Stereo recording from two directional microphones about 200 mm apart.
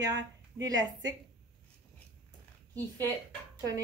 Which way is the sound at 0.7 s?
20° right (ahead or behind).